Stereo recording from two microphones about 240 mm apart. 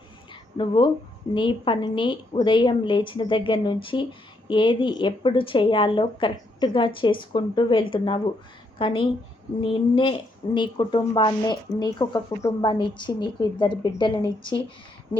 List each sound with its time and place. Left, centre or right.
0.5 s a woman's voice: centre